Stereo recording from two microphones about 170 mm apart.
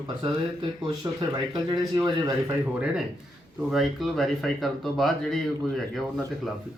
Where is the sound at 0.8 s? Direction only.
25° right (ahead or behind).